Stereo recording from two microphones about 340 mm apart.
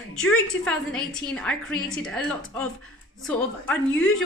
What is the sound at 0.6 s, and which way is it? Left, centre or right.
A woman's voice, centre.